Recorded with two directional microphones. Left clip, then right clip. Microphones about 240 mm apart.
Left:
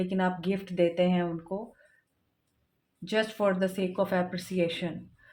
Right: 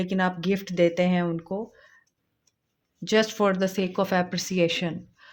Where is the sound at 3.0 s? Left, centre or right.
Right.